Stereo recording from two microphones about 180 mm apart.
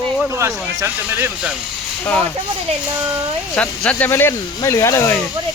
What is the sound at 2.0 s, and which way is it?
Speech, 10° left (ahead or behind).